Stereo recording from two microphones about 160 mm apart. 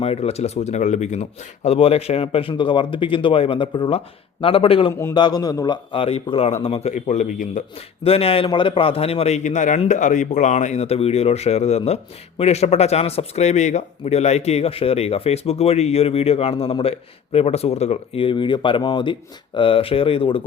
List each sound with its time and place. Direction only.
0.0 s speech: 40° left (ahead or behind)
4.9 s a man's voice: 15° left (ahead or behind)
5.1 s speech: 25° left (ahead or behind); by 7.6 s 50° left (ahead or behind)
8.0 s speech: 35° left (ahead or behind)